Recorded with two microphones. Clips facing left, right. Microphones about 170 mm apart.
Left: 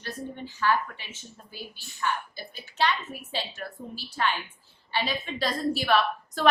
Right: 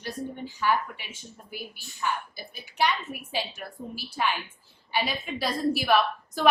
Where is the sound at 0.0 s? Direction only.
15° right (ahead or behind).